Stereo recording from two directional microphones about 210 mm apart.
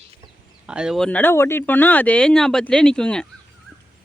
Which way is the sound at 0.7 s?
5° right (ahead or behind).